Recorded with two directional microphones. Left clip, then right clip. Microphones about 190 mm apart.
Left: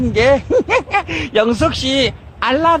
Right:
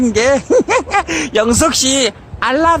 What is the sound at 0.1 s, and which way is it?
Speech, 15° right (ahead or behind).